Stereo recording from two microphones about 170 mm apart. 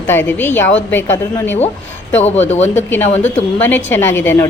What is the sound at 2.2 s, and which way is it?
Speech, 40° left (ahead or behind).